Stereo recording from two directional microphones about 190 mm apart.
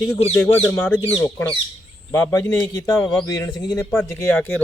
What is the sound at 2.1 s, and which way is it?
A man's voice, 10° left (ahead or behind).